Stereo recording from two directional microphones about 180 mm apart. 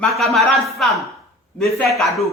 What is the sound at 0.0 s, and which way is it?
Speech, centre (ahead or behind).